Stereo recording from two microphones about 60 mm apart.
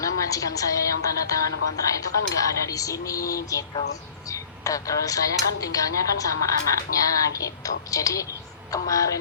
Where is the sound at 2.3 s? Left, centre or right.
Left.